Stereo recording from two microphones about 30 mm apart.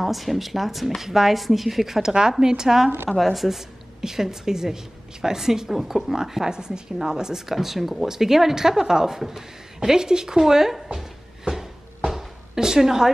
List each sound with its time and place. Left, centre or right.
0.0 s speech: centre
2.0 s a woman's voice: right
3.1 s speech: centre
3.4 s a woman's voice: centre
6.5 s a woman's voice: right
11.5 s a sound: centre
12.5 s a woman's voice: centre